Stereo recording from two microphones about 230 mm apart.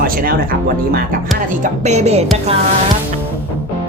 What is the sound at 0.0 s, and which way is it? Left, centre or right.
Speech, right.